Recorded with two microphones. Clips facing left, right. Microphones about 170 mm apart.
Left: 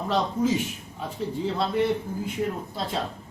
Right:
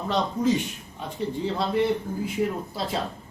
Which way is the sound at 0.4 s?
5° left (ahead or behind).